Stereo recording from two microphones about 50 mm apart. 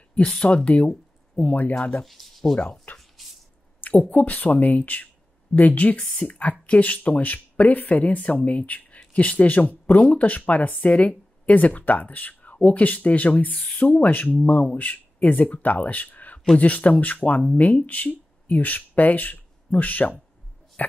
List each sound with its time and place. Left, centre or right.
0.5 s speech: left
2.0 s speech: centre
3.0 s squish: centre
3.8 s speech: left